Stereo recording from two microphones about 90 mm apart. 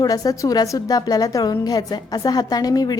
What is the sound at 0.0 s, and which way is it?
A woman's voice, 45° left (ahead or behind).